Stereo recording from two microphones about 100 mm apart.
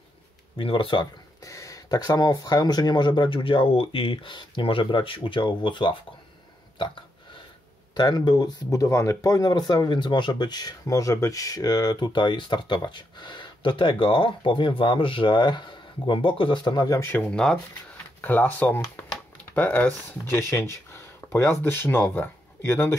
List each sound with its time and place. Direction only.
0.6 s speech: 65° left (ahead or behind)
1.4 s speech: 35° left (ahead or behind); by 5.9 s 50° left (ahead or behind)
6.8 s a sound: 55° left (ahead or behind)
7.9 s speech: 45° left (ahead or behind)
16.7 s speech: 40° left (ahead or behind)
17.0 s speech: 25° left (ahead or behind)
17.3 s speech: 5° left (ahead or behind)